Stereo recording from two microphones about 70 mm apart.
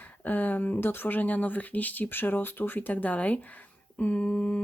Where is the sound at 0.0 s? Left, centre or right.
Left.